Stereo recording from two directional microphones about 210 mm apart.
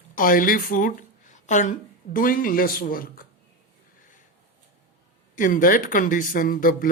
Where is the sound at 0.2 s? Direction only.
40° left (ahead or behind).